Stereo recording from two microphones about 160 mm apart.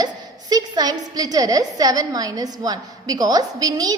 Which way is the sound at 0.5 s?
25° right (ahead or behind).